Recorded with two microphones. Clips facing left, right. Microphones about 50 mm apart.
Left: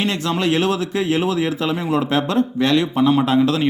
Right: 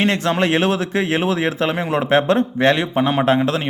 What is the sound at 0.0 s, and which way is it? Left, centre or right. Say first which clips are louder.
Speech: right 3 dB; right.